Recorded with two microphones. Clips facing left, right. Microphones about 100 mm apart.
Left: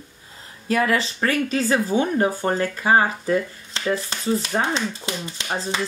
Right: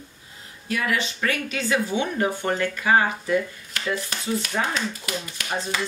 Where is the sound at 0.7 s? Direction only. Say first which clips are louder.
Left 5 dB; 35° left (ahead or behind).